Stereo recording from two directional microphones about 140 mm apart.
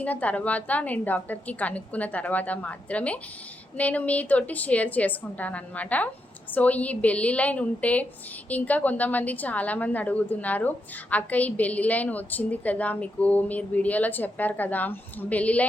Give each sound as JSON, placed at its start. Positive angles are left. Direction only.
{"t": 0.0, "sound": "a woman's voice", "side_deg": 10}